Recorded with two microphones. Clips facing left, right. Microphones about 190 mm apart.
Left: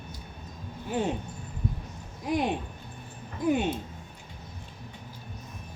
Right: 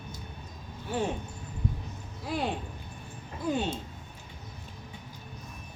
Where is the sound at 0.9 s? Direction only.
20° left (ahead or behind).